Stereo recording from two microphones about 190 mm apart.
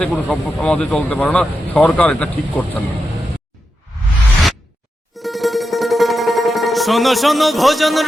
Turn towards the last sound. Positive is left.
turn(degrees=0)  # may be behind; listen again after turning